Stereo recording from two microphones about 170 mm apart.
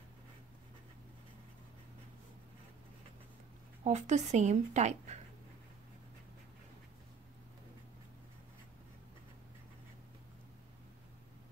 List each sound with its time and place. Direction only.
3.8 s a woman's voice: 40° right (ahead or behind)